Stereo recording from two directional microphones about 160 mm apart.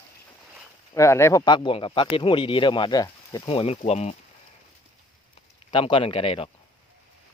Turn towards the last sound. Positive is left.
turn(degrees=35)  # may be behind; listen again after turning